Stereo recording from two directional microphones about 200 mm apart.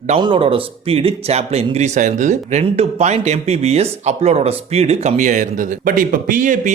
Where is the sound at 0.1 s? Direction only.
25° right (ahead or behind).